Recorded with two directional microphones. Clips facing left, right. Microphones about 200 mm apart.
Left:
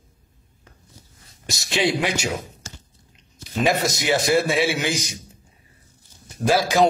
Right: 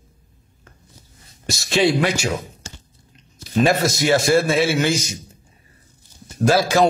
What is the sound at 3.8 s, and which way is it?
A man's voice, 20° left (ahead or behind).